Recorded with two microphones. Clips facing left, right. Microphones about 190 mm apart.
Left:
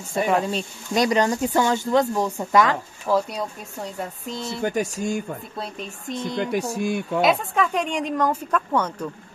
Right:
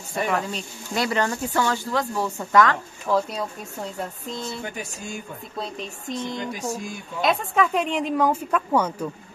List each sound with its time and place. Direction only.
0.1 s speech: 25° left (ahead or behind)
3.2 s speech: centre (ahead or behind)
5.6 s speech: centre (ahead or behind)
6.5 s speech: 70° left (ahead or behind)
7.2 s speech: centre (ahead or behind)